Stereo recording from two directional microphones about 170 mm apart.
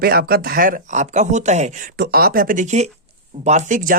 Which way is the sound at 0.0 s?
65° right (ahead or behind).